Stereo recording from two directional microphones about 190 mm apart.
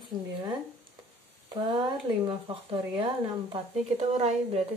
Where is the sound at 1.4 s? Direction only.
25° right (ahead or behind).